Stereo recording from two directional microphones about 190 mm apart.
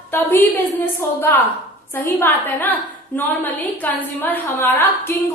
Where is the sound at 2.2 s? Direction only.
10° left (ahead or behind).